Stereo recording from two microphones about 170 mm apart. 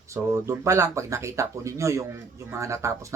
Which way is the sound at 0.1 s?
15° right (ahead or behind).